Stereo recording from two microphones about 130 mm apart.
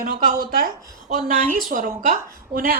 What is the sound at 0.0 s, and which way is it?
Speech, 90° right.